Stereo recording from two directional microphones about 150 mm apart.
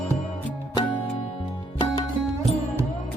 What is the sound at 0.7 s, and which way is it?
Music, 30° left (ahead or behind).